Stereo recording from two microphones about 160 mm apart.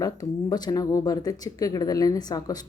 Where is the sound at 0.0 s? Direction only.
25° left (ahead or behind).